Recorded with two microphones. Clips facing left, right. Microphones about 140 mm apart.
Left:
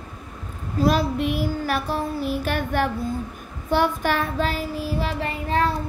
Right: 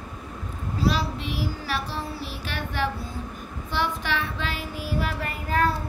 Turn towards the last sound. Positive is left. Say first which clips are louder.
# left 3 dB
turn(degrees=30)  # may be behind; listen again after turning